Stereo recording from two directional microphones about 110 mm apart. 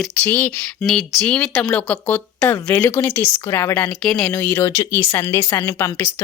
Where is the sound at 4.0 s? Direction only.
5° left (ahead or behind).